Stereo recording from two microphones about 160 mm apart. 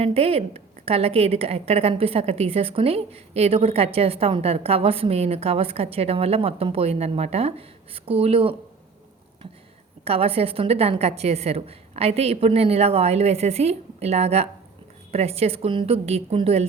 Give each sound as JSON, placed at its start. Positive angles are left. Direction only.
{"t": 0.0, "sound": "a woman's voice", "side_deg": -40}
{"t": 10.0, "sound": "a woman's voice", "side_deg": -40}